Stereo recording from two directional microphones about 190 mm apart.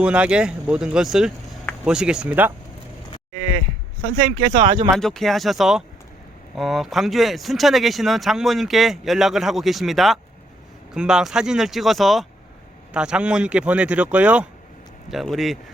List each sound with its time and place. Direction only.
0.0 s speech: 5° right (ahead or behind)
4.4 s speech: 25° right (ahead or behind)
4.9 s speech: centre (ahead or behind)